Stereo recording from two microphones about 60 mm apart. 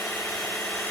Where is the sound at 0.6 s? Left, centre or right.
Centre.